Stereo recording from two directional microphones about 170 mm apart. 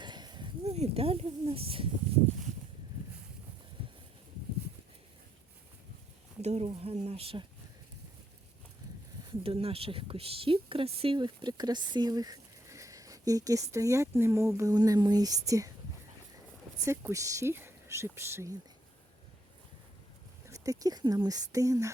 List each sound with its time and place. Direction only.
0.0 s a sound: 25° right (ahead or behind)
0.6 s speech: 35° right (ahead or behind)
6.4 s speech: 40° right (ahead or behind)
9.3 s speech: 35° right (ahead or behind)
16.8 s speech: 15° right (ahead or behind)
20.5 s speech: 20° right (ahead or behind)